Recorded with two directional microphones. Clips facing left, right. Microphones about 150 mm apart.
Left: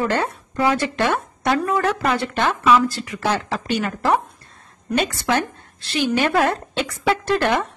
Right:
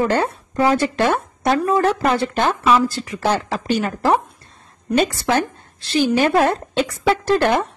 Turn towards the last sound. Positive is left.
turn(degrees=-35)  # may be behind; listen again after turning